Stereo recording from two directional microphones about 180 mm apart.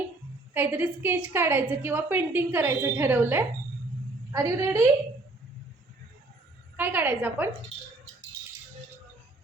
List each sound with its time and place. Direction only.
0.5 s a woman's voice: 10° right (ahead or behind)
6.7 s a woman's voice: 10° right (ahead or behind)